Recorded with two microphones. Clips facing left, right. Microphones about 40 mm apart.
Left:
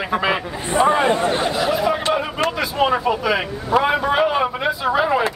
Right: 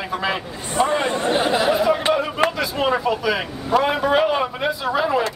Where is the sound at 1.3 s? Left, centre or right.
Centre.